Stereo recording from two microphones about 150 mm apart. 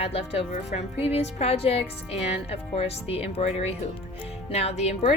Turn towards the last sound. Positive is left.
turn(degrees=45)  # may be behind; listen again after turning